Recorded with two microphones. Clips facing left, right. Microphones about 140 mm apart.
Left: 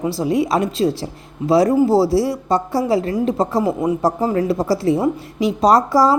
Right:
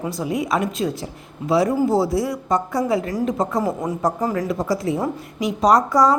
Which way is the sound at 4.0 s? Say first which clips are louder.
Even; 30° left (ahead or behind).